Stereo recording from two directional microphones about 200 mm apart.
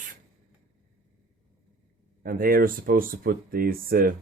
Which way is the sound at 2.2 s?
45° right (ahead or behind).